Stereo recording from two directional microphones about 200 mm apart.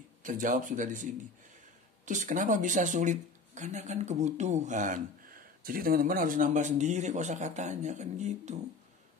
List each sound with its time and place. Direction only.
0.2 s speech: 40° right (ahead or behind)
2.0 s speech: 40° right (ahead or behind)